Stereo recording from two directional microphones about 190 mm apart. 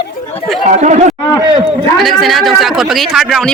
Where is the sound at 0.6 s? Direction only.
40° right (ahead or behind).